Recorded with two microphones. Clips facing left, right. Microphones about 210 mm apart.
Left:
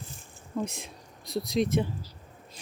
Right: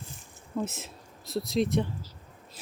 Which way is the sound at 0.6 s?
5° right (ahead or behind).